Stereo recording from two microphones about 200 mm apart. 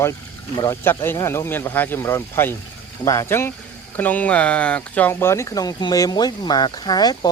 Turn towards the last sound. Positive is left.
turn(degrees=20)  # may be behind; listen again after turning